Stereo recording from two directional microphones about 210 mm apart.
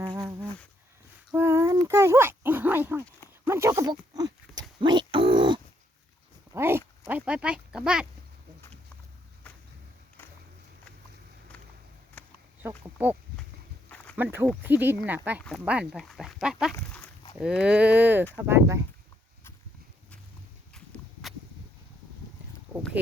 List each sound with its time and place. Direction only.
0.1 s insect: 15° right (ahead or behind)
1.3 s a sound: 15° right (ahead or behind)
3.4 s speech: 10° right (ahead or behind)
4.8 s a sound: 20° right (ahead or behind)
6.5 s speech: 10° right (ahead or behind)
12.6 s speech: 10° right (ahead or behind)
13.9 s a sound: 5° left (ahead or behind)
14.2 s speech: 10° right (ahead or behind)
16.7 s dog: 5° left (ahead or behind)
17.4 s speech: 5° right (ahead or behind)
20.7 s walk: centre (ahead or behind)